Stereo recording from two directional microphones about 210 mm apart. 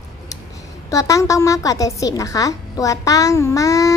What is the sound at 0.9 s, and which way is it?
A woman's voice, 15° left (ahead or behind).